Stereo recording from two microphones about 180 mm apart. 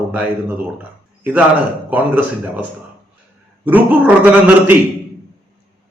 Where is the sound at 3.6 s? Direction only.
10° right (ahead or behind).